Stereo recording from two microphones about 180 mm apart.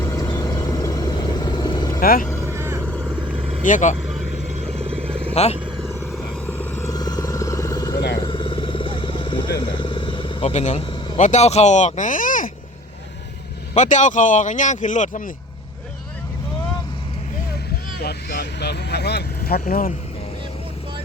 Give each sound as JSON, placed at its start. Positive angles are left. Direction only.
{"t": 0.0, "sound": "vehicle", "side_deg": 20}
{"t": 2.0, "sound": "speech", "side_deg": 50}
{"t": 2.5, "sound": "vehicle", "side_deg": -15}
{"t": 3.6, "sound": "speech", "side_deg": 45}
{"t": 4.6, "sound": "vehicle", "side_deg": -35}
{"t": 5.3, "sound": "speech", "side_deg": 35}
{"t": 6.4, "sound": "vehicle", "side_deg": 10}
{"t": 8.2, "sound": "a sound", "side_deg": 30}
{"t": 9.6, "sound": "speech", "side_deg": 25}
{"t": 13.7, "sound": "speech", "side_deg": 40}
{"t": 18.0, "sound": "speech", "side_deg": 60}